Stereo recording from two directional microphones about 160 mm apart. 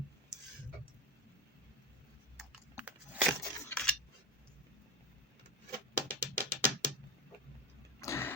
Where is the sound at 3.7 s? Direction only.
10° left (ahead or behind).